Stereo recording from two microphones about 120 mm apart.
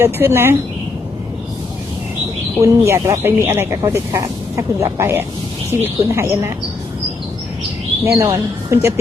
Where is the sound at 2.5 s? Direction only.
20° right (ahead or behind).